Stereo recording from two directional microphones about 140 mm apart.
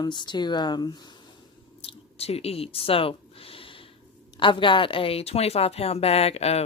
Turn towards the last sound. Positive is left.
turn(degrees=45)  # may be behind; listen again after turning